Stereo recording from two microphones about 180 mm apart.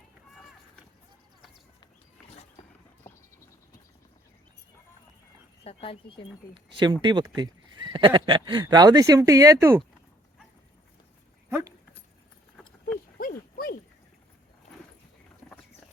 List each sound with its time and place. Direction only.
5.6 s speech: 30° left (ahead or behind)
6.7 s speech: 25° right (ahead or behind)
11.4 s dog: 15° right (ahead or behind)